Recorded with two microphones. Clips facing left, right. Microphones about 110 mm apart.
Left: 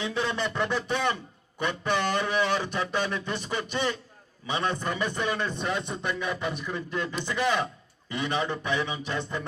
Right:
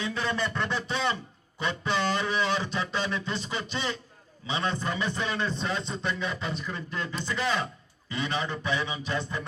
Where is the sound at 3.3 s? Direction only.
50° left (ahead or behind).